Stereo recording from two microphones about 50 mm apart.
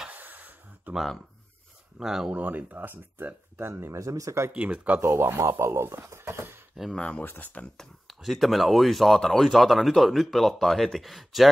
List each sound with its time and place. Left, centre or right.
0.1 s a sound: right
0.9 s speech: centre
2.0 s speech: centre
2.3 s speech: right
3.9 s speech: right
4.5 s speech: right
5.0 s speech: right
7.0 s speech: centre
7.2 s speech: left
8.1 s speech: centre